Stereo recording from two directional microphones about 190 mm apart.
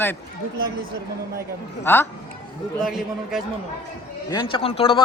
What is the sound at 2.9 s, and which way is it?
Speech, centre (ahead or behind).